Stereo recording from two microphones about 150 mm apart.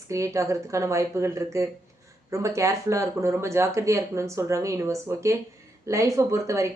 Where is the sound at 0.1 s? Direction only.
20° right (ahead or behind).